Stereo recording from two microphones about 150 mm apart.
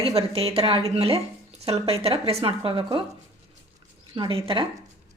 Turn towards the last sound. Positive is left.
turn(degrees=-35)  # may be behind; listen again after turning